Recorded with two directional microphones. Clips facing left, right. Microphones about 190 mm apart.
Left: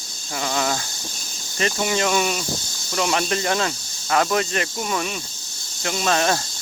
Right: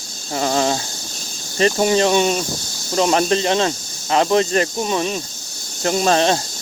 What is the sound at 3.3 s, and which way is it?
Speech, 25° right (ahead or behind).